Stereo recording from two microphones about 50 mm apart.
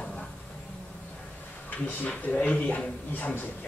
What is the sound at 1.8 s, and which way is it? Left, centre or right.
Speech, left.